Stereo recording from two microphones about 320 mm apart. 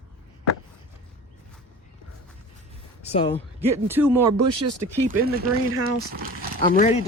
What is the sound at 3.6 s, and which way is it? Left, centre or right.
Speech, centre.